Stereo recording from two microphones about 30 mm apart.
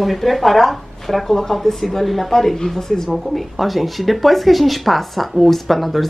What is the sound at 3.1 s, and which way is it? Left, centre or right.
Speech, centre.